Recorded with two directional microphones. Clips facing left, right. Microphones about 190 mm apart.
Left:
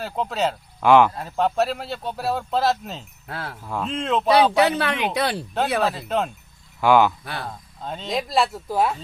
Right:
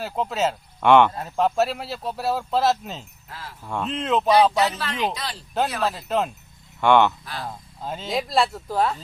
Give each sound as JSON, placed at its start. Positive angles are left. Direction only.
{"t": 0.0, "sound": "speech", "side_deg": 0}
{"t": 3.2, "sound": "speech", "side_deg": 65}
{"t": 3.6, "sound": "speech", "side_deg": 0}
{"t": 4.5, "sound": "speech", "side_deg": 65}
{"t": 5.8, "sound": "speech", "side_deg": 0}